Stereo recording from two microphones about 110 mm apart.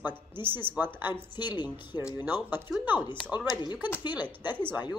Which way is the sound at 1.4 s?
40° left (ahead or behind).